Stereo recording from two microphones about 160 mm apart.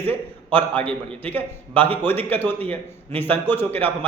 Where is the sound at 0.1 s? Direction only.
10° left (ahead or behind).